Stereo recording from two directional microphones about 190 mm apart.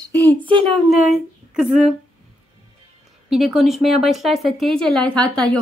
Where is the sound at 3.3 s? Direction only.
Centre (ahead or behind).